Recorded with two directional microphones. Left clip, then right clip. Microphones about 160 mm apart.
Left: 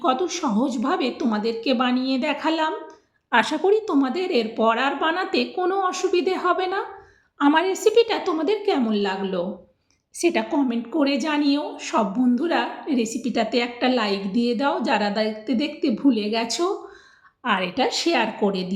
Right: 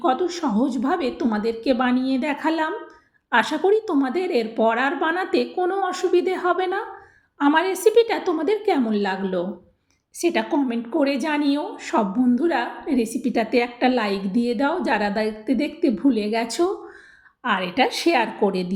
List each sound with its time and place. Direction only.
0.0 s a woman's voice: 10° right (ahead or behind)
3.3 s a woman's voice: centre (ahead or behind)
3.7 s a woman's voice: 15° right (ahead or behind)
7.4 s a woman's voice: centre (ahead or behind)
7.8 s a woman's voice: 20° right (ahead or behind)
10.2 s a woman's voice: centre (ahead or behind)
10.5 s a woman's voice: 20° right (ahead or behind)
17.4 s a woman's voice: centre (ahead or behind)
17.7 s a woman's voice: 25° right (ahead or behind)